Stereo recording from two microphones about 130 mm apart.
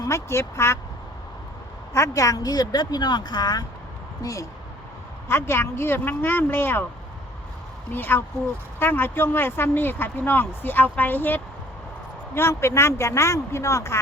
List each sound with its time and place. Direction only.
0.0 s speech: 20° left (ahead or behind)
1.9 s speech: 25° left (ahead or behind)
7.9 s speech: 15° left (ahead or behind)